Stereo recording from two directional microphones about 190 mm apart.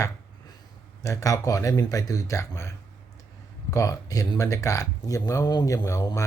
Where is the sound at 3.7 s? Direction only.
15° left (ahead or behind).